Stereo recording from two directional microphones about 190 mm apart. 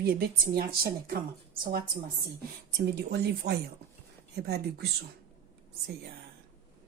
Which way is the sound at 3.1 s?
55° right (ahead or behind).